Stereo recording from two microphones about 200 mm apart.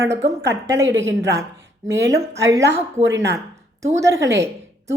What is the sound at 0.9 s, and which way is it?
Speech, 65° right (ahead or behind).